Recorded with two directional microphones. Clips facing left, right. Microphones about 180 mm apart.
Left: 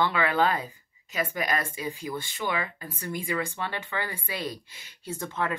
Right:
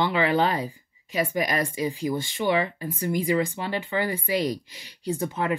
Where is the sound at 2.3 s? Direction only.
25° right (ahead or behind).